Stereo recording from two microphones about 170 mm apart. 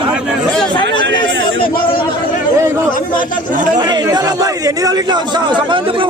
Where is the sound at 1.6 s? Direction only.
60° left (ahead or behind).